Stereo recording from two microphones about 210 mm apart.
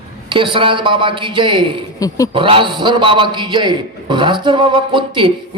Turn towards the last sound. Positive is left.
turn(degrees=-25)  # may be behind; listen again after turning